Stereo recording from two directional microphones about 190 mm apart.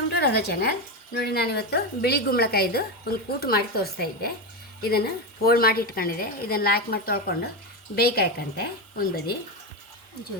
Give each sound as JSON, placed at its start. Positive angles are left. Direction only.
{"t": 0.2, "sound": "a woman's voice", "side_deg": 55}